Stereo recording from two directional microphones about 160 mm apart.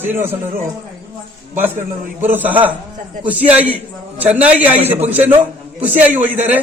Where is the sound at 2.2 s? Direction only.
10° right (ahead or behind).